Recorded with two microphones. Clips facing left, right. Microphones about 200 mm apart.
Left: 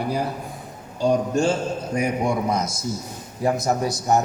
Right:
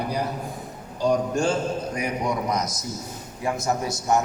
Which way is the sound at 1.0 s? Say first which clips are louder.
Left 2 dB; 25° left (ahead or behind).